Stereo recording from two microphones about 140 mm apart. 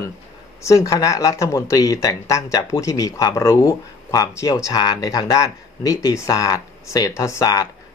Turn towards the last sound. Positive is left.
turn(degrees=25)  # may be behind; listen again after turning